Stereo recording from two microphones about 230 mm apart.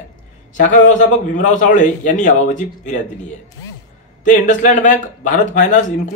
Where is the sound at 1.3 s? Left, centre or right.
Left.